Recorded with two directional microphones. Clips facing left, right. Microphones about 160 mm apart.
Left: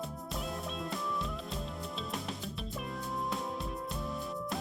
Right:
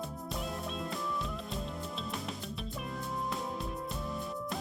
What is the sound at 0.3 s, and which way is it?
Music, centre (ahead or behind).